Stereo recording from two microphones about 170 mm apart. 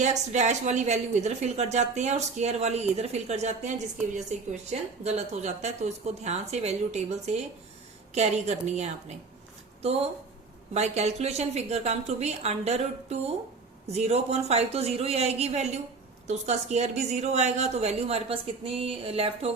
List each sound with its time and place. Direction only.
0.0 s speech: 45° right (ahead or behind)
10.8 s speech: 40° right (ahead or behind)